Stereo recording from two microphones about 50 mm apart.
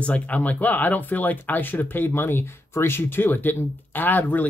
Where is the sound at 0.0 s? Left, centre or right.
Left.